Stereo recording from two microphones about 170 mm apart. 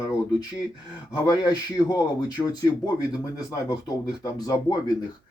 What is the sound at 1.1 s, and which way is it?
Speech, 20° left (ahead or behind).